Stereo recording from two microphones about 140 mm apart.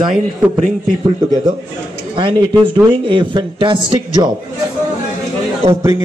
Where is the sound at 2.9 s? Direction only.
35° right (ahead or behind).